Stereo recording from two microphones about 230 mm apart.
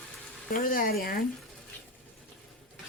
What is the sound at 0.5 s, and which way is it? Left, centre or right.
Speech, left.